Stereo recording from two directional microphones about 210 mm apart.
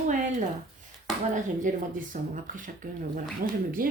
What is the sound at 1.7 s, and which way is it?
Speech, 40° right (ahead or behind).